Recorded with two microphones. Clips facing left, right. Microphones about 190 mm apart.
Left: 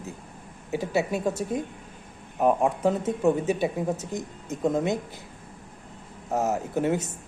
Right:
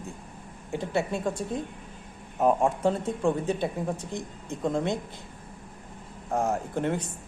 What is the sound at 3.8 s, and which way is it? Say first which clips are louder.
Speech: left 3 dB; 20° left (ahead or behind).